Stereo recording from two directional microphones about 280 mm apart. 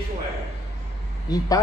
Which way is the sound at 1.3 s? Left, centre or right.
Centre.